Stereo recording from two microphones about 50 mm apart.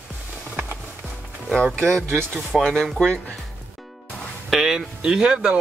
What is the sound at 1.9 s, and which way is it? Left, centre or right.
Speech, centre.